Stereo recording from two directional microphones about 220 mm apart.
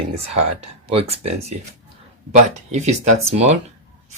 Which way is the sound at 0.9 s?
25° right (ahead or behind).